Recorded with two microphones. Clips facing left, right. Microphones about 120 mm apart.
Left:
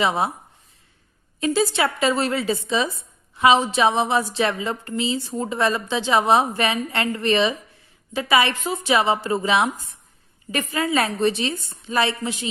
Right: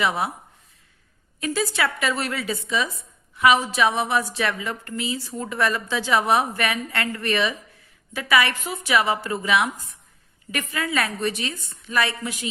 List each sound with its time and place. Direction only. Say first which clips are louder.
0.0 s a woman's voice: left 2 dB; 25° left (ahead or behind)
1.4 s a woman's voice: left 4 dB; 25° left (ahead or behind)